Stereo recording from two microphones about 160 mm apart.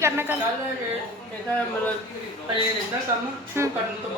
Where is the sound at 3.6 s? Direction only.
15° right (ahead or behind).